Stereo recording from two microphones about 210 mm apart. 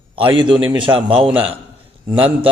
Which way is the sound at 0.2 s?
25° right (ahead or behind).